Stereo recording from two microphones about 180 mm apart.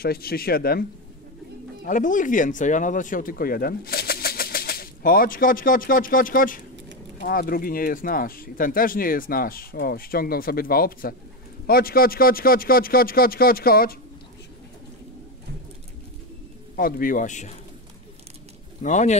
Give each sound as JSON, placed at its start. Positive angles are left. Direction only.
{"t": 0.0, "sound": "a man's voice", "side_deg": 60}
{"t": 1.9, "sound": "a man's voice", "side_deg": 45}
{"t": 16.7, "sound": "speech", "side_deg": 55}
{"t": 18.8, "sound": "speech", "side_deg": 40}